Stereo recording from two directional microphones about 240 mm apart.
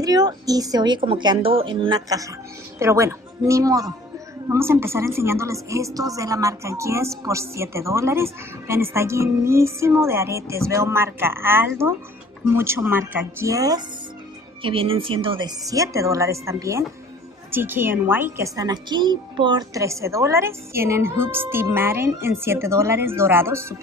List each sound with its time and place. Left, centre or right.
0.0 s a woman's voice: centre